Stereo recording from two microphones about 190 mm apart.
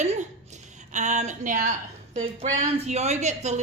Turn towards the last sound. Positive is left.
turn(degrees=-35)  # may be behind; listen again after turning